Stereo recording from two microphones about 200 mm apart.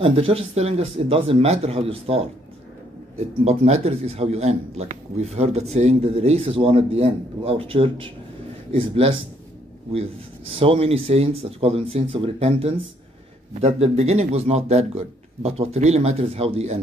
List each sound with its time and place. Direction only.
0.0 s a man's voice: 30° right (ahead or behind)